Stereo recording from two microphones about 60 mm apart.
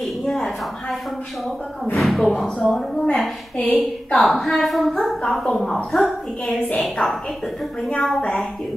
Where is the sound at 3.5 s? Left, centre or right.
Left.